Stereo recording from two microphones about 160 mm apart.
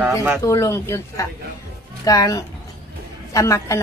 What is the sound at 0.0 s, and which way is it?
Speech, 10° right (ahead or behind).